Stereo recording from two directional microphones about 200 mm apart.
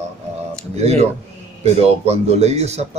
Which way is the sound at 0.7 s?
30° right (ahead or behind).